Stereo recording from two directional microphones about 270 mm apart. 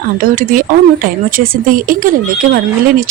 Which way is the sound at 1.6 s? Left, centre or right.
Right.